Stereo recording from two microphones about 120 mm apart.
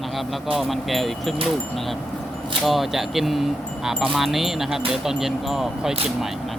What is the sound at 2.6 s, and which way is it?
Speech, centre (ahead or behind).